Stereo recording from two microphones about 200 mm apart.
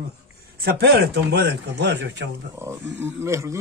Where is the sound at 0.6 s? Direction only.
55° right (ahead or behind).